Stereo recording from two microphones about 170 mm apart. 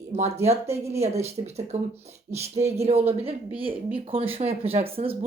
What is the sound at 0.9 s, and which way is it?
Speech, 40° right (ahead or behind).